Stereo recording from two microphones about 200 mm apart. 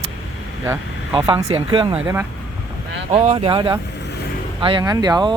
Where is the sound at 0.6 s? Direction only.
15° right (ahead or behind).